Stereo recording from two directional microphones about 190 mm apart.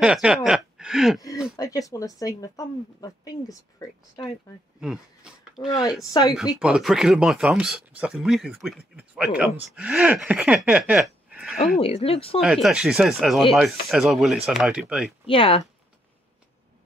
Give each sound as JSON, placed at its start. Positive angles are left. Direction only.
{"t": 0.0, "sound": "a sound", "side_deg": -5}
{"t": 1.6, "sound": "speech", "side_deg": 20}
{"t": 4.7, "sound": "a sound", "side_deg": -5}
{"t": 6.0, "sound": "speech", "side_deg": 20}
{"t": 6.3, "sound": "speech", "side_deg": -5}
{"t": 11.8, "sound": "speech", "side_deg": 30}
{"t": 12.4, "sound": "speech", "side_deg": 0}
{"t": 15.2, "sound": "speech", "side_deg": 30}